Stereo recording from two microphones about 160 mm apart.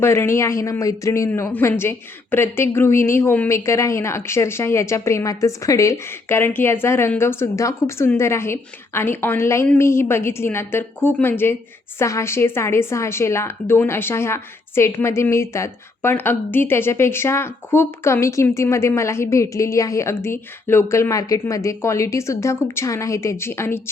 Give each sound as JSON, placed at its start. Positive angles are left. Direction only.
{"t": 0.0, "sound": "speech", "side_deg": 15}